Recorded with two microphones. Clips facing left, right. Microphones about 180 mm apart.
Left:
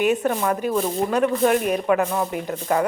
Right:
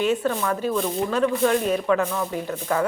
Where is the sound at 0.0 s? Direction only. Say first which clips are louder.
Left 2 dB; 15° left (ahead or behind).